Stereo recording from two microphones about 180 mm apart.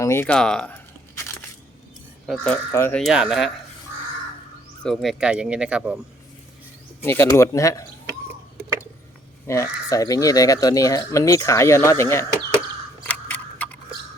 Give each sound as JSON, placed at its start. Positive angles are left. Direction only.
{"t": 0.0, "sound": "speech", "side_deg": 15}
{"t": 2.2, "sound": "speech", "side_deg": 5}
{"t": 3.0, "sound": "speech", "side_deg": -5}
{"t": 4.8, "sound": "speech", "side_deg": 0}
{"t": 7.0, "sound": "speech", "side_deg": 15}
{"t": 9.5, "sound": "speech", "side_deg": 20}
{"t": 13.1, "sound": "a sound", "side_deg": 10}